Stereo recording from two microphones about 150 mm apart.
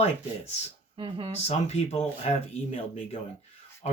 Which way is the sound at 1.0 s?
35° right (ahead or behind).